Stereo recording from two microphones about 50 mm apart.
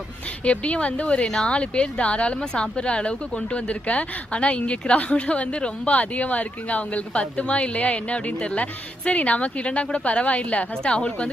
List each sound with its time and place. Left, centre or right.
0.4 s speech: left
1.3 s speech: centre
1.5 s speech: left